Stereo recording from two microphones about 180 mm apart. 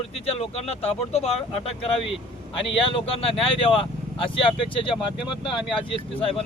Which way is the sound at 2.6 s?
30° left (ahead or behind).